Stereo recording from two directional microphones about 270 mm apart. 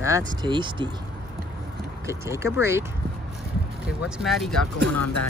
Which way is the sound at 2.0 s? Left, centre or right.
Centre.